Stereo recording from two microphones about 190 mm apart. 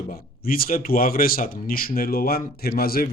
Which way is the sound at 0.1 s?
50° left (ahead or behind).